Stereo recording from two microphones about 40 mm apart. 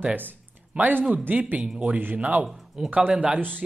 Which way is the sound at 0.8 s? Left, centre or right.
Right.